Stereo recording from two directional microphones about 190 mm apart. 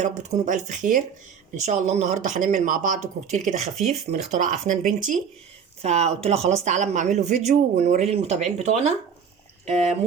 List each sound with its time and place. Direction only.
0.0 s speech: 40° right (ahead or behind)